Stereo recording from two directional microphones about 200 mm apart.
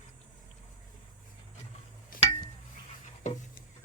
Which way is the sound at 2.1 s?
45° left (ahead or behind).